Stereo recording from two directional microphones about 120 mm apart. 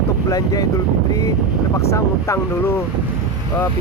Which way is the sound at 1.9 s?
25° left (ahead or behind).